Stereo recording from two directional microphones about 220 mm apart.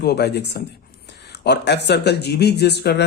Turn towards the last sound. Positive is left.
turn(degrees=50)  # may be behind; listen again after turning